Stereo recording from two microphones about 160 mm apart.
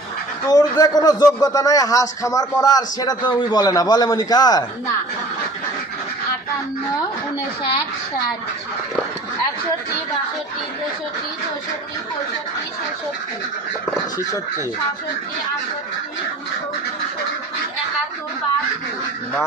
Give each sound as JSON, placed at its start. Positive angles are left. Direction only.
{"t": 0.5, "sound": "a man's voice", "side_deg": 25}